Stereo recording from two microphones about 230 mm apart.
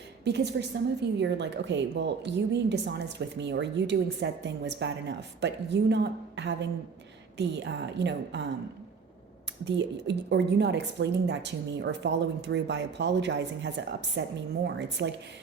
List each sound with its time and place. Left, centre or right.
0.6 s a woman's voice: right
9.6 s a woman's voice: right